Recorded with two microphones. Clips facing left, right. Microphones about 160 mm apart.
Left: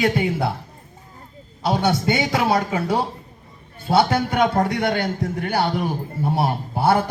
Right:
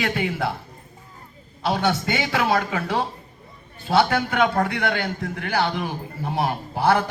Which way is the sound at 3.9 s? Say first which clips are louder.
Left 1 dB; 25° left (ahead or behind).